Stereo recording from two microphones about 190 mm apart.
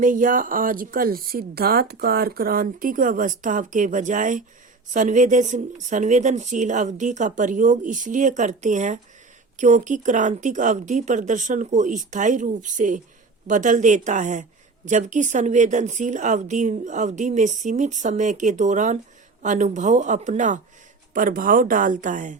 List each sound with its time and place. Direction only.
0.0 s speech: 45° right (ahead or behind)